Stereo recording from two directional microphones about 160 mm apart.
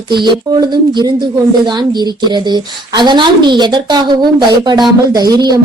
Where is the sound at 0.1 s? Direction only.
30° right (ahead or behind).